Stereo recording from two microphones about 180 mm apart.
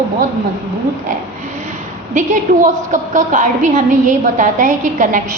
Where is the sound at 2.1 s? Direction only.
45° right (ahead or behind).